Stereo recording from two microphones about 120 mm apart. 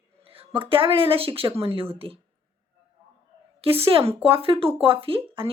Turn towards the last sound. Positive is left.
turn(degrees=-50)  # may be behind; listen again after turning